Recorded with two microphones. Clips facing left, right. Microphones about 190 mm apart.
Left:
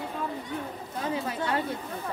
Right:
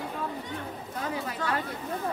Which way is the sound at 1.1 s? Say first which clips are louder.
Left 2 dB; 25° left (ahead or behind).